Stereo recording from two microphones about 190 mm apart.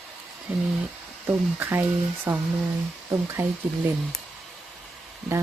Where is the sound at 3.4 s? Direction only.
15° right (ahead or behind).